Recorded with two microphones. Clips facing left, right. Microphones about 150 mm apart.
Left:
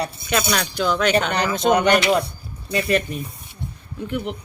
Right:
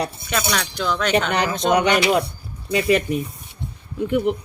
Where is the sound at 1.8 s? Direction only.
10° right (ahead or behind).